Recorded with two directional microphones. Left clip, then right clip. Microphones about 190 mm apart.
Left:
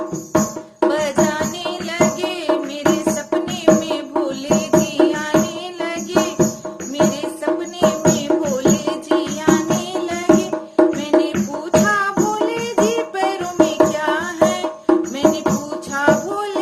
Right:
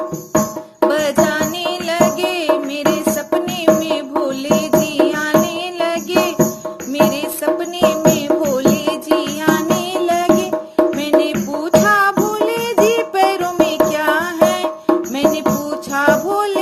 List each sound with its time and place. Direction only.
0.3 s music: 40° right (ahead or behind)